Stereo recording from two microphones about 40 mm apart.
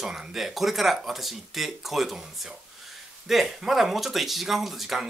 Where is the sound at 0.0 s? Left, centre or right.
Centre.